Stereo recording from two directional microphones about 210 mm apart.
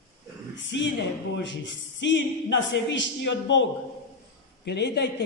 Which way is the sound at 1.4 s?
60° left (ahead or behind).